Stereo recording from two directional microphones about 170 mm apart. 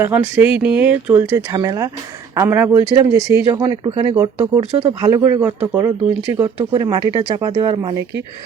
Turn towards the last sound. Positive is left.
turn(degrees=-25)  # may be behind; listen again after turning